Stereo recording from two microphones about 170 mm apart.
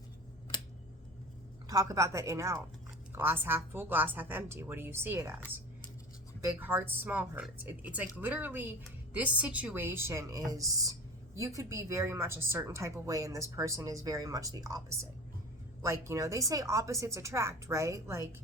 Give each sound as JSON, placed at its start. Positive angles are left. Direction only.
{"t": 1.6, "sound": "a woman's voice", "side_deg": -20}